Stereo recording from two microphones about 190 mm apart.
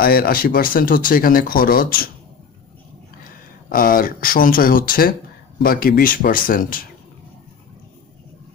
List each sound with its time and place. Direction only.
0.0 s speech: 50° left (ahead or behind)
3.7 s speech: 50° left (ahead or behind)